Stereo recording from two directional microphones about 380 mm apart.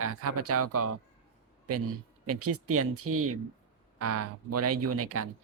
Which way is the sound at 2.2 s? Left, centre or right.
Right.